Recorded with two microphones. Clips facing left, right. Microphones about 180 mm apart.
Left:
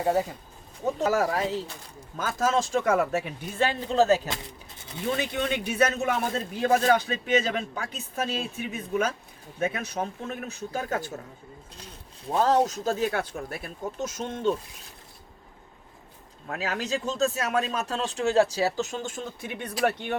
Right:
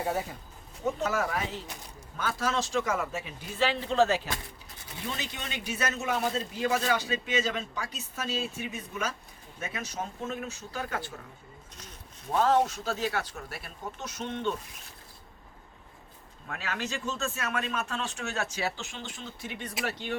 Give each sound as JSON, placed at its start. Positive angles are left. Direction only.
{"t": 0.9, "sound": "a man's voice", "side_deg": 35}
{"t": 5.1, "sound": "a man's voice", "side_deg": 55}
{"t": 12.4, "sound": "speech", "side_deg": 40}
{"t": 16.5, "sound": "a man's voice", "side_deg": 35}